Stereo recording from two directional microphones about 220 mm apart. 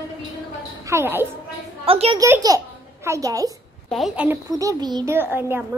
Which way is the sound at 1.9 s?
25° right (ahead or behind).